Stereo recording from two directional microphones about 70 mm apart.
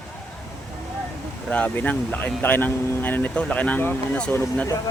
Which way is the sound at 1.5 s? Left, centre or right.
Left.